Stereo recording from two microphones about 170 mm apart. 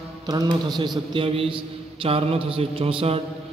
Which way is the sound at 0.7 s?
25° right (ahead or behind).